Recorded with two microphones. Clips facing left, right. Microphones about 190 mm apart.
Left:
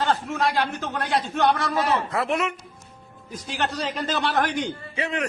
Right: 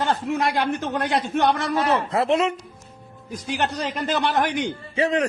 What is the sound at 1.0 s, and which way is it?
Speech, 55° right (ahead or behind).